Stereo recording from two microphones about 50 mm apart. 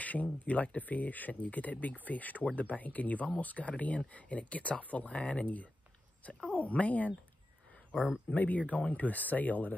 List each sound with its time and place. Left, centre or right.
0.0 s speech: left
8.3 s speech: left